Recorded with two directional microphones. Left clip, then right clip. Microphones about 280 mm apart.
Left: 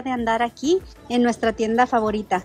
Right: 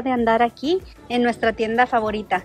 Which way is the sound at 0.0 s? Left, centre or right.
Centre.